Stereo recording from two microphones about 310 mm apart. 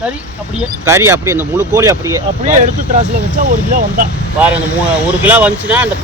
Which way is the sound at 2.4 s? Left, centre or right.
Right.